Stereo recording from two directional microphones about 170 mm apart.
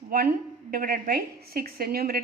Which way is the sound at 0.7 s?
60° right (ahead or behind).